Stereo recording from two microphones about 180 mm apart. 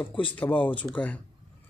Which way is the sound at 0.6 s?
10° left (ahead or behind).